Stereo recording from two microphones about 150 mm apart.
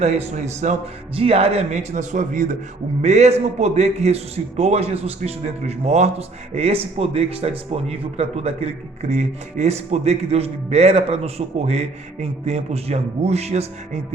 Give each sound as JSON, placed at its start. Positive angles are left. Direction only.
{"t": 0.0, "sound": "a man's voice", "side_deg": -45}